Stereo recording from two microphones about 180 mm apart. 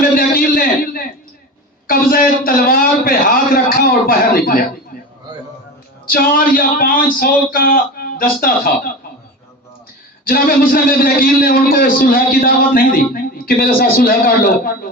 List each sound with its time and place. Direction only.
0.2 s a sound: 50° left (ahead or behind)
1.9 s a man's voice: 55° left (ahead or behind)
6.1 s a man's voice: 55° left (ahead or behind)
10.2 s a man's voice: 55° left (ahead or behind)